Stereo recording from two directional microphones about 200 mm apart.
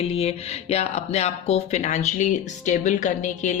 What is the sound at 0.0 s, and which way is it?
Speech, 30° left (ahead or behind).